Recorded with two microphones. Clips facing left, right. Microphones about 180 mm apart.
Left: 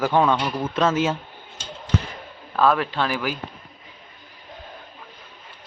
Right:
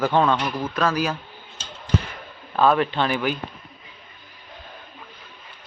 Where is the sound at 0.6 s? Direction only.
25° left (ahead or behind).